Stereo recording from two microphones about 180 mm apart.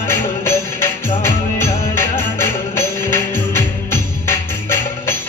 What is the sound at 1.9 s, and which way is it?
Music, 10° left (ahead or behind).